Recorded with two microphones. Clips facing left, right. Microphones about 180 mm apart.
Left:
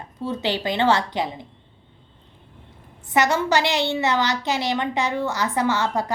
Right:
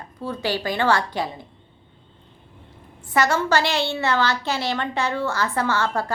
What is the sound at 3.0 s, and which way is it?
A woman's voice, 20° left (ahead or behind).